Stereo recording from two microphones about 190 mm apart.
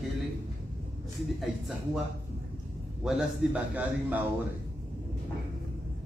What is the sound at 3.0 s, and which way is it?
A man's voice, 5° right (ahead or behind).